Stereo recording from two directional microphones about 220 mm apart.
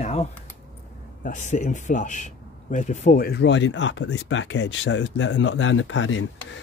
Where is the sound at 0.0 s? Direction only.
30° left (ahead or behind).